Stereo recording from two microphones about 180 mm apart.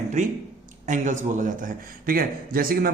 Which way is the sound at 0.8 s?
45° right (ahead or behind).